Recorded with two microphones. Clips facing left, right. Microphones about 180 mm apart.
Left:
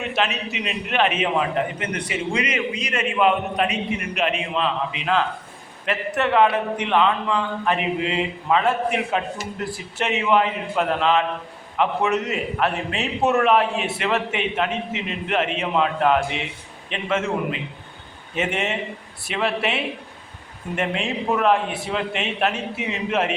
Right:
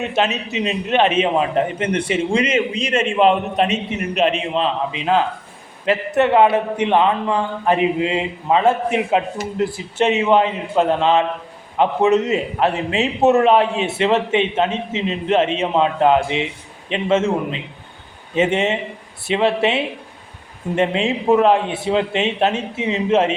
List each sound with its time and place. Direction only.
0.1 s a man's voice: 25° right (ahead or behind)